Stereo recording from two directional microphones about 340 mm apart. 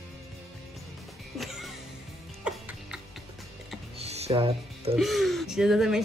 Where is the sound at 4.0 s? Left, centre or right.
Centre.